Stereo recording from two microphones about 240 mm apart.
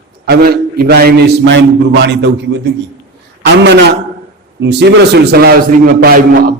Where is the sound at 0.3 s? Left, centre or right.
Right.